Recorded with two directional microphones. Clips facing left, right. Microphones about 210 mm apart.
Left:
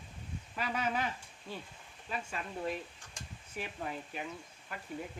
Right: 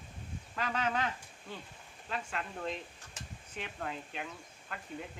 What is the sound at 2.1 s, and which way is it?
Speech, 10° left (ahead or behind).